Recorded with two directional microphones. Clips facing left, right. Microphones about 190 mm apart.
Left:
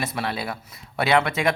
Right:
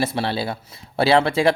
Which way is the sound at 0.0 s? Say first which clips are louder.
Right 5 dB; 30° right (ahead or behind).